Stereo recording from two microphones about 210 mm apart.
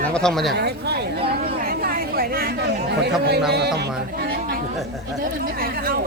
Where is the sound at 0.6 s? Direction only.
50° right (ahead or behind).